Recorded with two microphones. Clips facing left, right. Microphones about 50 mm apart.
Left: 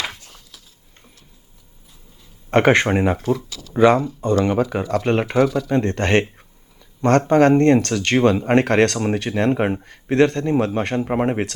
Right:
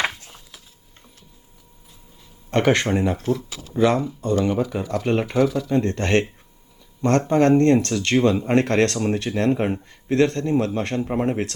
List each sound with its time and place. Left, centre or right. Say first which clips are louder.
2.6 s speech: left 4 dB; left